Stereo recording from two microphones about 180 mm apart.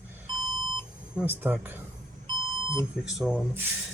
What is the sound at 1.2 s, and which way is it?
Speech, 10° right (ahead or behind).